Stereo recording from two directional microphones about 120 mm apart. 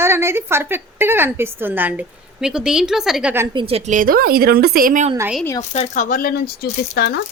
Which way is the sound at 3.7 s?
80° right.